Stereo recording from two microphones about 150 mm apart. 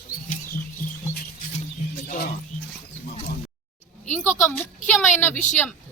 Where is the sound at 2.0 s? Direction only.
90° left.